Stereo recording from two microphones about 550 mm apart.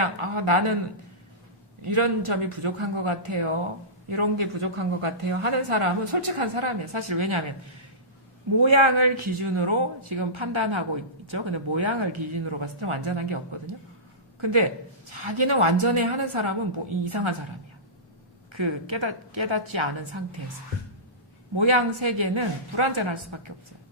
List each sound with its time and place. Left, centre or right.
0.0 s a woman's voice: right
1.8 s a woman's voice: right
8.7 s a woman's voice: right
15.2 s a woman's voice: right
18.5 s a woman's voice: right
21.6 s a woman's voice: right